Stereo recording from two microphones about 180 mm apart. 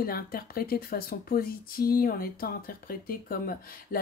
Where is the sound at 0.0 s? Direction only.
55° left (ahead or behind).